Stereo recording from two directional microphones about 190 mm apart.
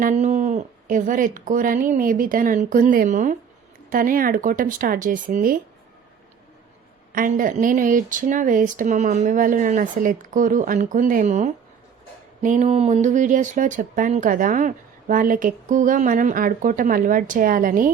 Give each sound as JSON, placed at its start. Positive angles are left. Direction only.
{"t": 0.0, "sound": "speech", "side_deg": -40}
{"t": 7.1, "sound": "speech", "side_deg": -45}